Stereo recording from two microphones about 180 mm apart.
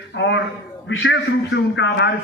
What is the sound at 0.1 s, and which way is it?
A man's voice, 80° left.